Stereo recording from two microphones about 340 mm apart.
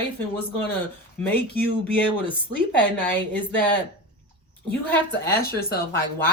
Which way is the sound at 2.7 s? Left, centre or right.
Centre.